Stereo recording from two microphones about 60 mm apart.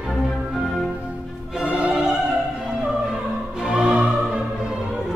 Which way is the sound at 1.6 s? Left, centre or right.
Centre.